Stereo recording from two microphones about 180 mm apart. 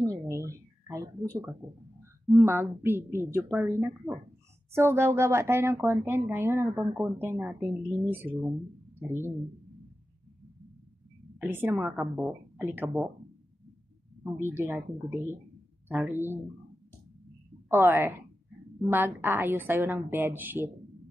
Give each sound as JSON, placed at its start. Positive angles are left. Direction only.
{"t": 0.0, "sound": "a sound", "side_deg": -20}
{"t": 2.2, "sound": "speech", "side_deg": -15}
{"t": 11.3, "sound": "speech", "side_deg": -10}
{"t": 14.4, "sound": "speech", "side_deg": -15}
{"t": 17.6, "sound": "a woman's voice", "side_deg": -15}